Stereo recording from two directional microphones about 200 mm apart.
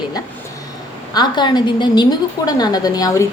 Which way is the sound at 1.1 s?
20° left (ahead or behind).